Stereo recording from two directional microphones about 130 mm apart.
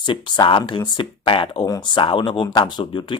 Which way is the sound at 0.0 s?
40° left (ahead or behind).